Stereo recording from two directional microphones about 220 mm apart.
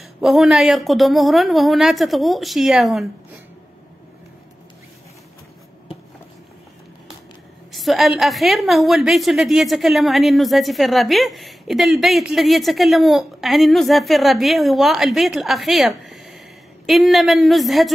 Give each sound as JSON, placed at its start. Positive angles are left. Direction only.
{"t": 0.2, "sound": "a woman's voice", "side_deg": 0}
{"t": 7.7, "sound": "a woman's voice", "side_deg": 0}
{"t": 16.0, "sound": "a sound", "side_deg": 0}
{"t": 16.8, "sound": "a woman's voice", "side_deg": 0}